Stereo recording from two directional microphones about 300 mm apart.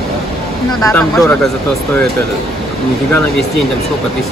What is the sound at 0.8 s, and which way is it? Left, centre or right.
Speech, centre.